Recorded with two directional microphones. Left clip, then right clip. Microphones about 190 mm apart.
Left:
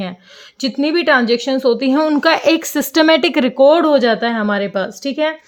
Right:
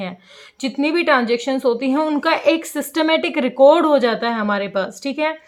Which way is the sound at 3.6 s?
20° left (ahead or behind).